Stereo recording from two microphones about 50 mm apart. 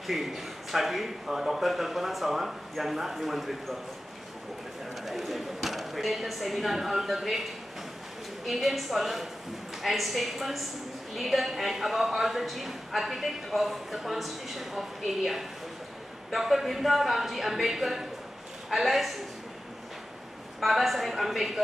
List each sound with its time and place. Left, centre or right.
0.0 s speech: centre
5.0 s speech: centre
8.5 s speech: centre
20.6 s speech: centre